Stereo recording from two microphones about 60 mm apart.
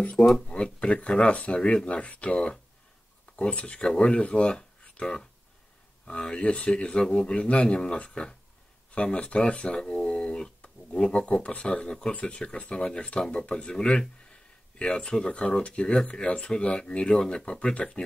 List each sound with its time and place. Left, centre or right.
0.0 s speech: left